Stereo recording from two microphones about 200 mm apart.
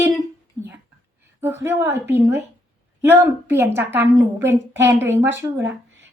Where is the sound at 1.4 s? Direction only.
10° right (ahead or behind).